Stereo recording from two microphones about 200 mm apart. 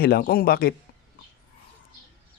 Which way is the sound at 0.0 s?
50° left (ahead or behind).